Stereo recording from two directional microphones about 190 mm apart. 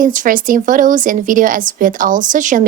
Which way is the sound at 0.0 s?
45° right (ahead or behind).